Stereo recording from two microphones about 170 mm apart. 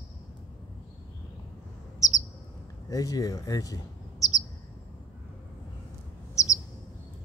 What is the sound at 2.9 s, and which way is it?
Speech, 20° left (ahead or behind).